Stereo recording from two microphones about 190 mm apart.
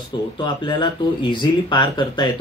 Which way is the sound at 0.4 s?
25° left (ahead or behind).